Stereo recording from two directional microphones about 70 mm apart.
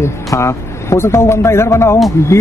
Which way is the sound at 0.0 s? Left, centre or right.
Left.